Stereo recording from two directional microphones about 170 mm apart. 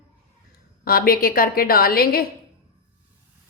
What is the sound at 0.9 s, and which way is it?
A woman's voice, 60° left (ahead or behind).